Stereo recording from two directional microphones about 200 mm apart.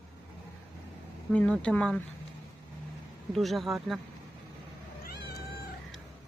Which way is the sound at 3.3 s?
Centre (ahead or behind).